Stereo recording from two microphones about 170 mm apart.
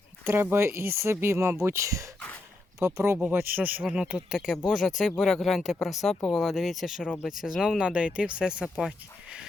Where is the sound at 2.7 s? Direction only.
15° right (ahead or behind).